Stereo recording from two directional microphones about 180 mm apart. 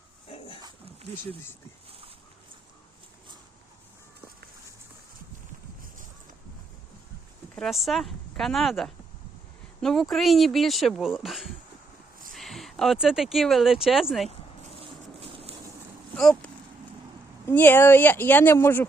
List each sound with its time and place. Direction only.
0.3 s dog: 30° left (ahead or behind)
7.5 s speech: centre (ahead or behind)
14.8 s a sound: 30° right (ahead or behind)
16.1 s speech: centre (ahead or behind)